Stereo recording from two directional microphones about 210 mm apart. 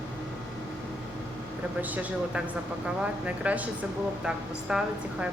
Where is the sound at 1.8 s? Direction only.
5° right (ahead or behind).